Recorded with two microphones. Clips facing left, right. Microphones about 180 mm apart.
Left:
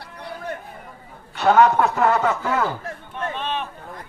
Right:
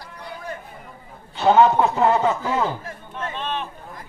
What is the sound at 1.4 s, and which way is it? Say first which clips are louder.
A man's voice: even; 25° right (ahead or behind).